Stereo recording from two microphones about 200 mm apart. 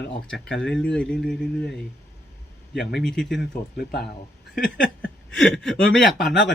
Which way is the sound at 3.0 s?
5° left (ahead or behind).